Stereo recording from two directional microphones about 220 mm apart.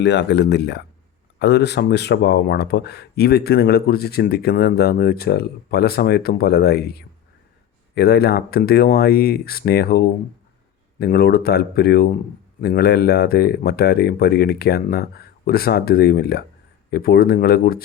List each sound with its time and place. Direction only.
0.0 s speech: 50° left (ahead or behind)
11.0 s speech: 45° left (ahead or behind)